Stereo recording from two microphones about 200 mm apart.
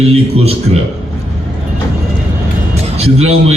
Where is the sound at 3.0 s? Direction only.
30° right (ahead or behind).